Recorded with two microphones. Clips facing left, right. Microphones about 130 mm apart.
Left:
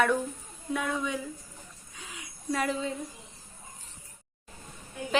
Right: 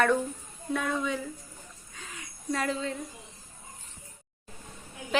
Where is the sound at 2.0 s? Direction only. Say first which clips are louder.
Even; 10° left (ahead or behind).